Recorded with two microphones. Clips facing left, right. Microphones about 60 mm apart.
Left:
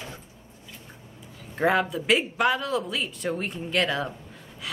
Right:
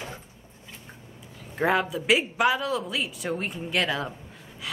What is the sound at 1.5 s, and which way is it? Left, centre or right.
A woman's voice, centre.